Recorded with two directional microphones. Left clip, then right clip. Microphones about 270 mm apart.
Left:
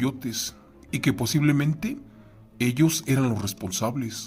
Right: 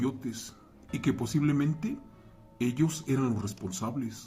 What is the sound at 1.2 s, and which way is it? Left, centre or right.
Speech, left.